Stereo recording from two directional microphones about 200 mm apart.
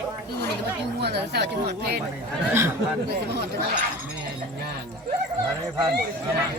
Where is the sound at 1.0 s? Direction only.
55° right (ahead or behind).